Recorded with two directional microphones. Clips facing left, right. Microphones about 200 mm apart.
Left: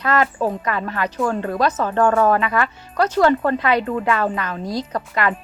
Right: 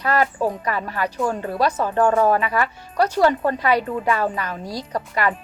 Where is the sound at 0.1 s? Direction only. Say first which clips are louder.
Left 1 dB; 10° right (ahead or behind).